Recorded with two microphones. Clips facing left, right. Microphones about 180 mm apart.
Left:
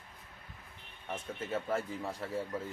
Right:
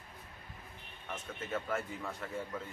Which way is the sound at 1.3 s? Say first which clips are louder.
Left 2 dB; 30° left (ahead or behind).